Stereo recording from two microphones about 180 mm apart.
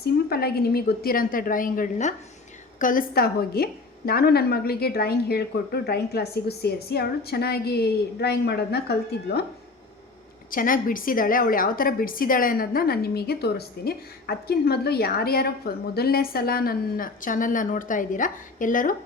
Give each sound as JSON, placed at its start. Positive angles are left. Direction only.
{"t": 0.0, "sound": "a woman's voice", "side_deg": 60}
{"t": 10.5, "sound": "a woman's voice", "side_deg": 50}